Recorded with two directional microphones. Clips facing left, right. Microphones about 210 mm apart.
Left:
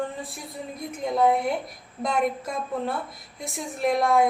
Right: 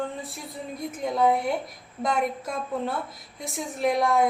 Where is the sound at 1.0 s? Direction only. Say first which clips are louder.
Left 1 dB; centre (ahead or behind).